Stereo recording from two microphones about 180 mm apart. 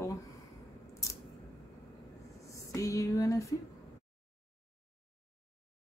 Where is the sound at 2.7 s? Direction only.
20° left (ahead or behind).